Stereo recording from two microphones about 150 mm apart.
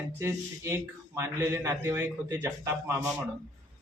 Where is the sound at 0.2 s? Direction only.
20° right (ahead or behind).